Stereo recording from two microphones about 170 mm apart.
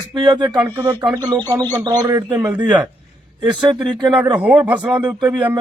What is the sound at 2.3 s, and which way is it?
Speech, 10° right (ahead or behind).